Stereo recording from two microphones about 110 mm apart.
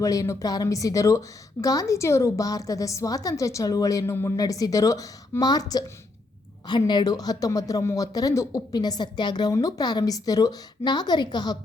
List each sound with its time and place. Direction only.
0.0 s a woman's voice: 30° left (ahead or behind)